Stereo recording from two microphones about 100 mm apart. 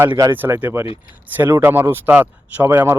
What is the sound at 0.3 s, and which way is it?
Speech, 20° right (ahead or behind).